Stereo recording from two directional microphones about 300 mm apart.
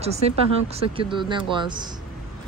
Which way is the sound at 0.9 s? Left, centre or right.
Centre.